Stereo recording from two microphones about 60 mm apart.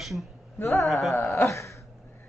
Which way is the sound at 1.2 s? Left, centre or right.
Left.